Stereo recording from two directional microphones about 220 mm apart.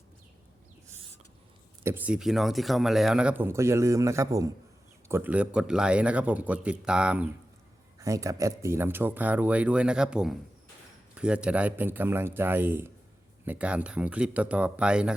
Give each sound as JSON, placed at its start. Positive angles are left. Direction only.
{"t": 1.8, "sound": "a man's voice", "side_deg": -10}